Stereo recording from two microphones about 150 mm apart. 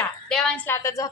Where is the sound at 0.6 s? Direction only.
20° left (ahead or behind).